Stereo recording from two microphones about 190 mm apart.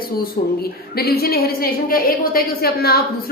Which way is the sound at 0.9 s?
55° left (ahead or behind).